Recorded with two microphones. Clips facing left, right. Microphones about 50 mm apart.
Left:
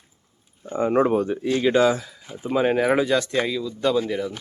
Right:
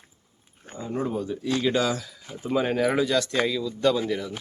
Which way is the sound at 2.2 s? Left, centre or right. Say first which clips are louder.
Left 4 dB; centre.